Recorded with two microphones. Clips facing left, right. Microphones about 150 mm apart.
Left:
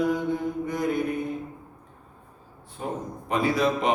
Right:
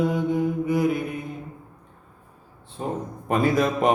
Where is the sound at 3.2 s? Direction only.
50° right (ahead or behind).